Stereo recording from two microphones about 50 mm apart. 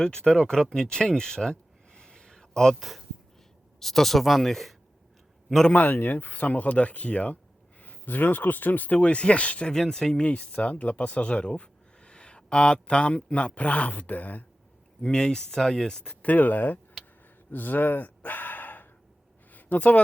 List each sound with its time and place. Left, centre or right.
0.0 s speech: centre
3.8 s speech: centre
5.7 s speech: left
9.0 s speech: left
9.7 s speech: centre
10.2 s speech: left
15.0 s speech: centre
16.2 s speech: left
17.5 s gasp: left
19.5 s a sound: left